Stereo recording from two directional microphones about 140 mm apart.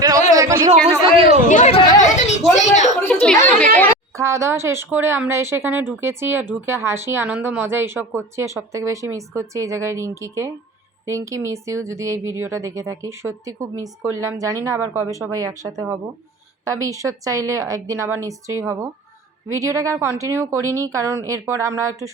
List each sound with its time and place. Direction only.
0.0 s a sound: 25° right (ahead or behind)
0.9 s speech: 40° right (ahead or behind)
1.5 s a woman's voice: 65° left (ahead or behind)
3.0 s speech: 10° left (ahead or behind)
4.2 s speech: 20° right (ahead or behind)